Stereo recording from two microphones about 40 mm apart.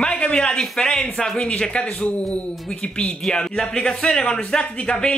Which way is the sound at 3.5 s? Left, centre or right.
Centre.